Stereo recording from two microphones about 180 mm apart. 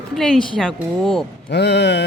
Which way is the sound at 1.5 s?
70° left (ahead or behind).